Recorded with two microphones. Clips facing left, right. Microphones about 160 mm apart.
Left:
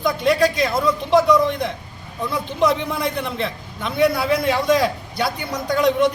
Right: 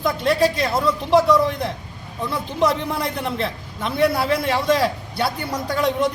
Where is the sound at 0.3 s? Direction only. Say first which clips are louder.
Even; 30° right (ahead or behind).